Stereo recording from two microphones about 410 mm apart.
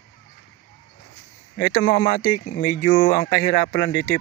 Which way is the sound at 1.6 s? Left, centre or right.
Centre.